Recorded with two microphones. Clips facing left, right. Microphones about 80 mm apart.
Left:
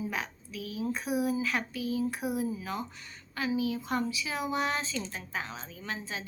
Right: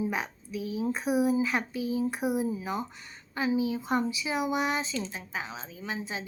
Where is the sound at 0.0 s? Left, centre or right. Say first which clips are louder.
Right 4 dB; right.